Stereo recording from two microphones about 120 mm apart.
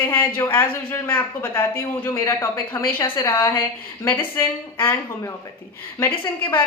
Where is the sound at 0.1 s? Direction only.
15° left (ahead or behind).